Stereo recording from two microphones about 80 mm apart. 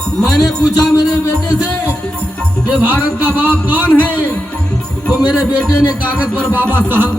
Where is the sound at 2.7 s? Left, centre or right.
Centre.